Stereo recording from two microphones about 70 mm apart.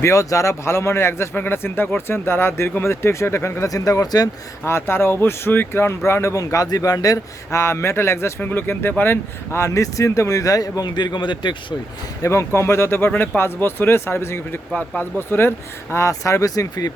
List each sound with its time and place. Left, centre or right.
0.0 s speech: left
3.7 s speech: left
4.6 s speech: left
6.4 s speech: left
7.5 s speech: left
8.4 s speech: left
9.6 s speech: left
12.2 s speech: left
13.1 s speech: left